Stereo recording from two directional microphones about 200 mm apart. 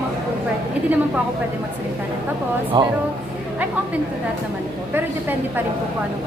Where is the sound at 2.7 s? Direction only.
20° right (ahead or behind).